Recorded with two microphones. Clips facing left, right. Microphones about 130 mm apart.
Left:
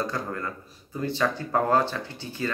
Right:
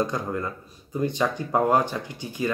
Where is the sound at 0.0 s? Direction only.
20° right (ahead or behind).